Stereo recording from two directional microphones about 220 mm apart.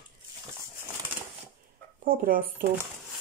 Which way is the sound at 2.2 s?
40° right (ahead or behind).